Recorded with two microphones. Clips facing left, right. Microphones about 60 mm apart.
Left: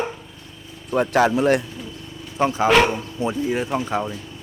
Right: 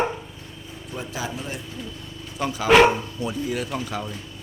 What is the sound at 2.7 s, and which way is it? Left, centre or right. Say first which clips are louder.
Speech: right 4 dB; centre.